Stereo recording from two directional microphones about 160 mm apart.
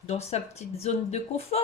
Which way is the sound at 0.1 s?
40° left (ahead or behind).